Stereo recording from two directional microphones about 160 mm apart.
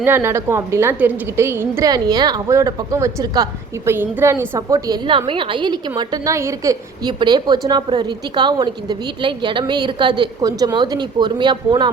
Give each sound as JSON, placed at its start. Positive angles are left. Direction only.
{"t": 0.0, "sound": "a woman's voice", "side_deg": -15}